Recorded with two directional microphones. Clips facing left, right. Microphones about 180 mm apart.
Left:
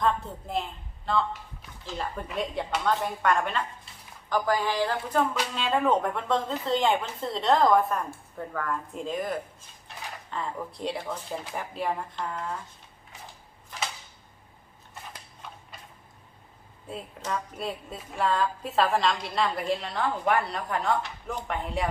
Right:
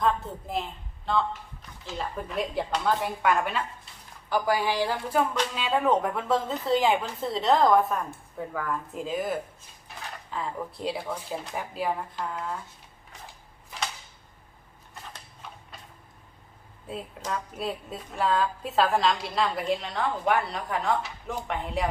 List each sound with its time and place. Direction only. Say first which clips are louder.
0.0 s a woman's voice: right 1 dB; centre (ahead or behind)
5.3 s a woman's voice: right 1 dB; centre (ahead or behind)
16.9 s a woman's voice: even; centre (ahead or behind)